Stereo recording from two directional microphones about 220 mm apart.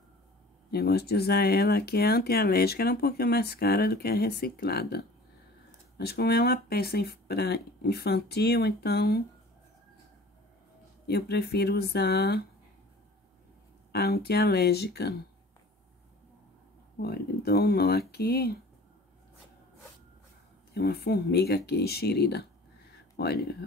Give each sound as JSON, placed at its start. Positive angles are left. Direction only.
{"t": 0.7, "sound": "speech", "side_deg": 45}
{"t": 11.1, "sound": "speech", "side_deg": 45}
{"t": 13.9, "sound": "speech", "side_deg": 45}
{"t": 17.0, "sound": "speech", "side_deg": 45}
{"t": 20.7, "sound": "speech", "side_deg": 45}